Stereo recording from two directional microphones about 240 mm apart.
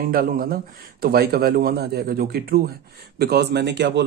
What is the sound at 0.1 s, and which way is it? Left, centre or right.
Speech, right.